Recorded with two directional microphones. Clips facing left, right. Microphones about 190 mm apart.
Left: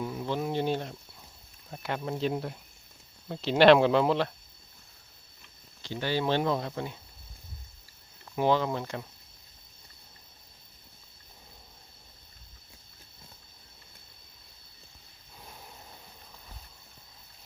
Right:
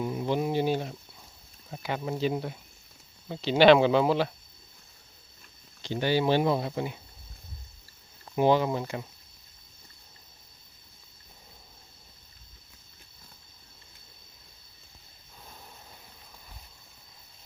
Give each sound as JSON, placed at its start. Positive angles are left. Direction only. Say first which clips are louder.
{"t": 0.0, "sound": "a sound", "louder": "right 3 dB", "side_deg": -15}
{"t": 1.7, "sound": "speech", "louder": "right 1 dB", "side_deg": 0}
{"t": 5.8, "sound": "speech", "louder": "right 4 dB", "side_deg": -15}
{"t": 8.4, "sound": "speech", "louder": "right 3 dB", "side_deg": -15}